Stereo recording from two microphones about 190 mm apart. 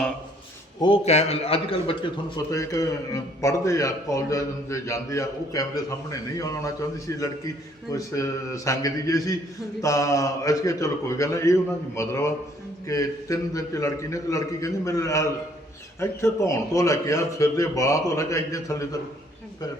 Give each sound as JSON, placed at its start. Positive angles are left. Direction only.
{"t": 0.8, "sound": "a man's voice", "side_deg": 30}
{"t": 2.5, "sound": "a man's voice", "side_deg": 15}